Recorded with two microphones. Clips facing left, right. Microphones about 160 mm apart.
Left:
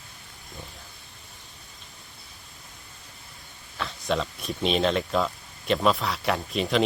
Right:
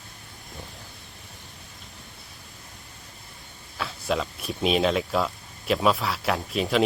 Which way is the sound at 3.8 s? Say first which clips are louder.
Even; 5° right (ahead or behind).